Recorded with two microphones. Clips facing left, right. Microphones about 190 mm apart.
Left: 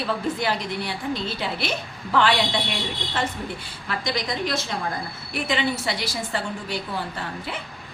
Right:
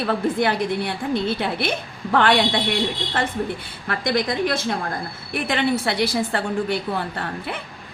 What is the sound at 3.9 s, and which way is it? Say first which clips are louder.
A woman's voice: right 5 dB; 55° right (ahead or behind).